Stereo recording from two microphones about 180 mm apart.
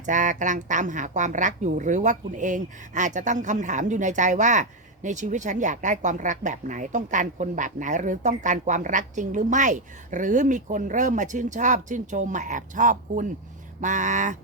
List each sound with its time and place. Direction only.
0.0 s speech: 45° right (ahead or behind)